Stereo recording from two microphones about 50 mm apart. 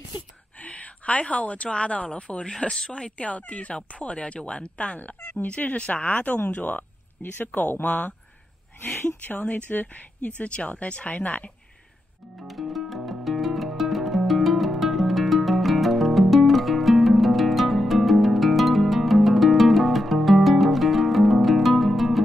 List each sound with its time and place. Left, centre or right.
0.6 s a woman's voice: left
7.8 s speech: left
12.4 s music: centre